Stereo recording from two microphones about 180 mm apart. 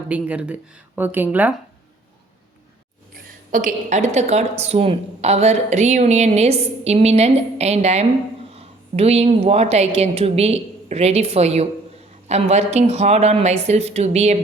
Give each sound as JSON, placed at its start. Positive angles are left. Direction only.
{"t": 0.1, "sound": "speech", "side_deg": -5}
{"t": 3.5, "sound": "a woman's voice", "side_deg": -45}